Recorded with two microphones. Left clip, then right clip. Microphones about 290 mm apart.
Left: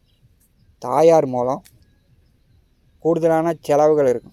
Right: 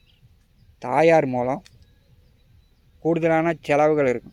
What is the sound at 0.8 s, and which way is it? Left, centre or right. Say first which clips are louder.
Speech: left 3 dB; centre.